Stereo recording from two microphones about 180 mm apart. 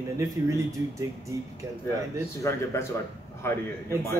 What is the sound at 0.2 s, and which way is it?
Speech, 15° right (ahead or behind).